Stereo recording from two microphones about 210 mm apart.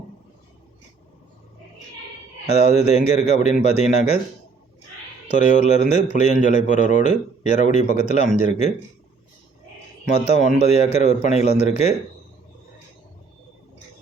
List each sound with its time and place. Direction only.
2.6 s speech: 30° left (ahead or behind)
5.3 s speech: 35° left (ahead or behind)
10.2 s speech: 30° left (ahead or behind)